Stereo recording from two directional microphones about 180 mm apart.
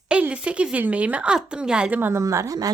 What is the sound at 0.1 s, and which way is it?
Speech, 5° right (ahead or behind).